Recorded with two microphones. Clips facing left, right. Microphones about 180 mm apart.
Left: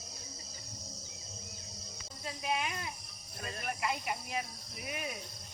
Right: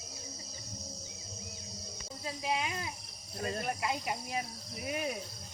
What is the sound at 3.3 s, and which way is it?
Speech, 30° right (ahead or behind).